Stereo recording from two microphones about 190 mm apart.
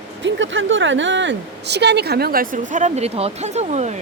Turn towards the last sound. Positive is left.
turn(degrees=-35)  # may be behind; listen again after turning